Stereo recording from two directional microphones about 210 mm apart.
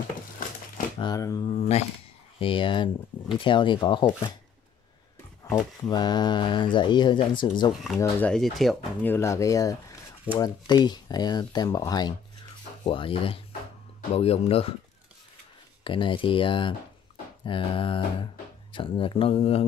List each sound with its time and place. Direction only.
0.9 s speech: 20° left (ahead or behind)
1.5 s speech: 30° left (ahead or behind)
5.5 s speech: 20° left (ahead or behind)
8.0 s speech: 5° left (ahead or behind); by 14.8 s 30° left (ahead or behind)
15.8 s speech: 25° left (ahead or behind)